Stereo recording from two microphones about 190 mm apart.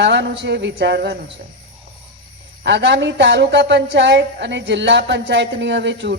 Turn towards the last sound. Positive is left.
turn(degrees=-65)  # may be behind; listen again after turning